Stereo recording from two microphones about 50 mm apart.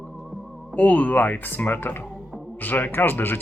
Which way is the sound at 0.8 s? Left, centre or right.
Left.